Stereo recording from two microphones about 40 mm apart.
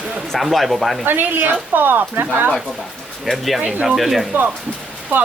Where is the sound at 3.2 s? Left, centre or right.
Centre.